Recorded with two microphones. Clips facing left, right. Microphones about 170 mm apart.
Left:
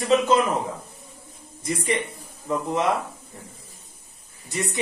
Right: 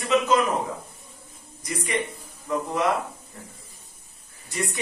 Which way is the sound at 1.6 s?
25° left (ahead or behind).